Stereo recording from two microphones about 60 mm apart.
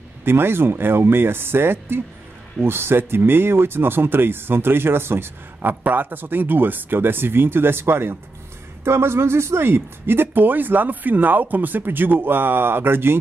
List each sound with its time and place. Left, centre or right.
0.2 s speech: right